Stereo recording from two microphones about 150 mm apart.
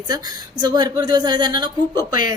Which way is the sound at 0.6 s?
25° right (ahead or behind).